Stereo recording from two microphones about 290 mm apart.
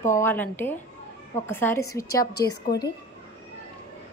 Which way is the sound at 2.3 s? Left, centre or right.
Left.